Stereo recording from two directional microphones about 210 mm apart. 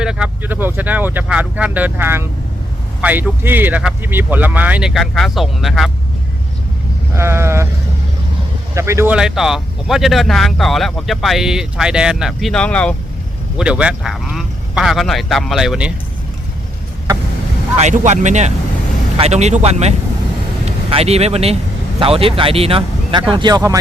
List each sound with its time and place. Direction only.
0.0 s speech: 5° right (ahead or behind)
7.1 s sheep: 10° right (ahead or behind)
8.7 s speech: 15° right (ahead or behind)
17.7 s speech: 35° right (ahead or behind); by 23.7 s 20° right (ahead or behind)